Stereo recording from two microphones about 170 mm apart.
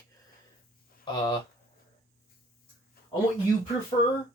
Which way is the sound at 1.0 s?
25° left (ahead or behind).